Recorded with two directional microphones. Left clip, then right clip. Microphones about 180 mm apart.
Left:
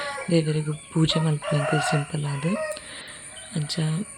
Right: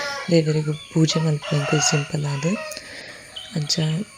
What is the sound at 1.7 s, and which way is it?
Chicken, 5° left (ahead or behind).